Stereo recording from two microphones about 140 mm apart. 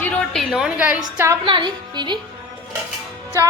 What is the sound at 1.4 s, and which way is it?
Speech, 30° right (ahead or behind).